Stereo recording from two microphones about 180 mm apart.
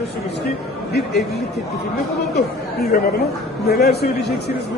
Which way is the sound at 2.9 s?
55° left (ahead or behind).